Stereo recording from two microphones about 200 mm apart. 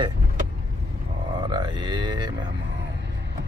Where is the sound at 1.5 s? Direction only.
20° right (ahead or behind).